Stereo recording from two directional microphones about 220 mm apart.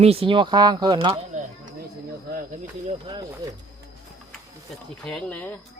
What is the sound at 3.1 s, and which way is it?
Speech, 20° right (ahead or behind).